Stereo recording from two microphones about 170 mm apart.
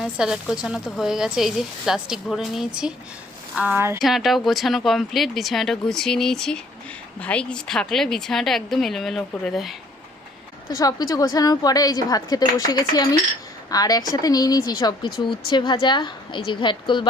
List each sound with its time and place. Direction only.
0.0 s speech: 5° right (ahead or behind)
4.0 s speech: centre (ahead or behind)
10.7 s a woman's voice: 20° left (ahead or behind)